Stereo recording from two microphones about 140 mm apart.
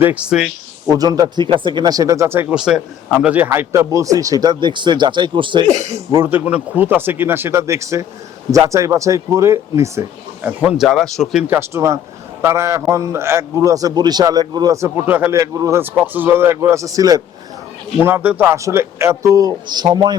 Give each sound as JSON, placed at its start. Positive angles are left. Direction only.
{"t": 0.0, "sound": "speech", "side_deg": -10}
{"t": 0.9, "sound": "a man's voice", "side_deg": -25}
{"t": 6.1, "sound": "a man's voice", "side_deg": -15}
{"t": 10.4, "sound": "speech", "side_deg": -10}
{"t": 11.4, "sound": "a man's voice", "side_deg": -20}
{"t": 18.0, "sound": "a man's voice", "side_deg": -15}